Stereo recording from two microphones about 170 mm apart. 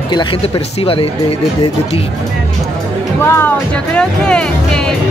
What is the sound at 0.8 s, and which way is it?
Speech, 35° left (ahead or behind).